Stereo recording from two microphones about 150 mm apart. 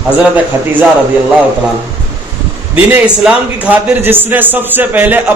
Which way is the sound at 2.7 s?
5° right (ahead or behind).